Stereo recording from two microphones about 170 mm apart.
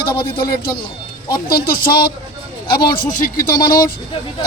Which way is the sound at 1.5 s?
60° left (ahead or behind).